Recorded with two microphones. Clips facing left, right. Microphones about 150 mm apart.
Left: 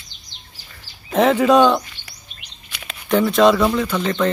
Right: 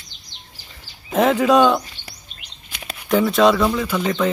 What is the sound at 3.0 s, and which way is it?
Speech, centre (ahead or behind).